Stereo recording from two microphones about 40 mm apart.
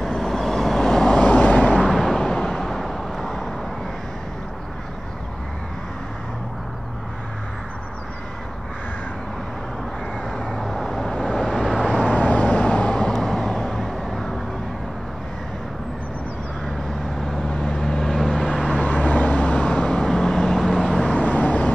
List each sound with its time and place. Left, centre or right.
0.0 s vehicle: centre
1.2 s vehicle: left
1.8 s a sound: centre
2.6 s vehicle: centre
10.5 s vehicle: centre
11.9 s vehicle: left
13.1 s vehicle: centre
17.6 s vehicle: centre
18.1 s vehicle: centre
18.7 s vehicle: left; by 20.5 s centre
20.7 s vehicle: centre
21.2 s vehicle: left